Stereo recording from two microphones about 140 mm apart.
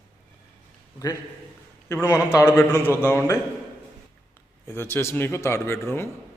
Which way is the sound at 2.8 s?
15° right (ahead or behind).